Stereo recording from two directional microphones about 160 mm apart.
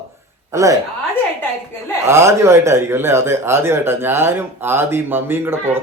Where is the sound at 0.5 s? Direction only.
20° right (ahead or behind).